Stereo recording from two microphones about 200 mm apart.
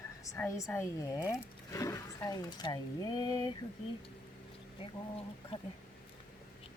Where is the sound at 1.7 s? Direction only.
15° left (ahead or behind).